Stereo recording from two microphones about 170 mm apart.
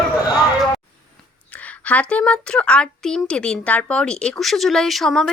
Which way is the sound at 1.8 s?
10° left (ahead or behind).